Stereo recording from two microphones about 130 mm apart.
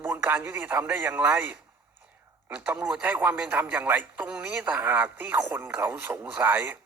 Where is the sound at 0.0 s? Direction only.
15° right (ahead or behind).